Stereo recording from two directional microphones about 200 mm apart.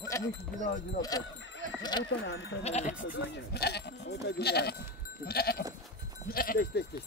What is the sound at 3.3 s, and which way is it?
Speech, 55° left (ahead or behind).